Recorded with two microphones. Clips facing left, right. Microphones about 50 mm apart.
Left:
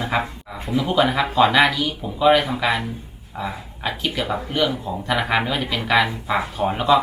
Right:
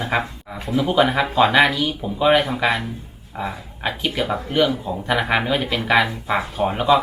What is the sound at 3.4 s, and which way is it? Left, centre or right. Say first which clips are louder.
Speech: right 1 dB; centre.